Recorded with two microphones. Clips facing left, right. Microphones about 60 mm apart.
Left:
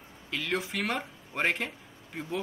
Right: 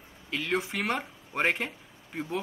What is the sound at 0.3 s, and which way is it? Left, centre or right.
Speech, centre.